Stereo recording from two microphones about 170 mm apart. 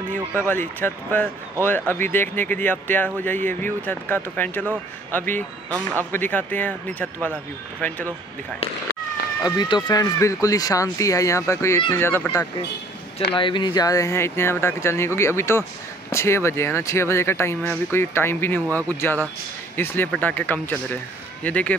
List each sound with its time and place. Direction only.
0.3 s speech: 15° left (ahead or behind)
9.4 s speech: 25° left (ahead or behind)
13.3 s speech: 30° left (ahead or behind); by 21.7 s 10° left (ahead or behind)